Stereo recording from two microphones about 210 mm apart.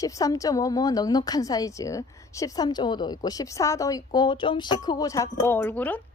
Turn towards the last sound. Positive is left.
turn(degrees=10)  # may be behind; listen again after turning